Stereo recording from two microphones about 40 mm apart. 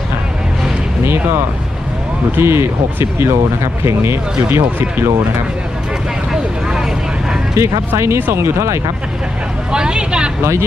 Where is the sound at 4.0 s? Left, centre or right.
Right.